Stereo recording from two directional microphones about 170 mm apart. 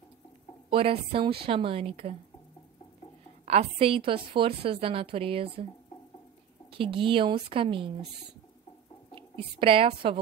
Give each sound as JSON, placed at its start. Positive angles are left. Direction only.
{"t": 0.7, "sound": "a woman's voice", "side_deg": -35}
{"t": 3.4, "sound": "a woman's voice", "side_deg": -40}
{"t": 6.7, "sound": "a woman's voice", "side_deg": -30}
{"t": 9.4, "sound": "a woman's voice", "side_deg": -35}